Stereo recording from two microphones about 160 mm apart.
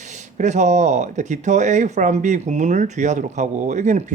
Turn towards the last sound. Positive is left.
turn(degrees=-45)  # may be behind; listen again after turning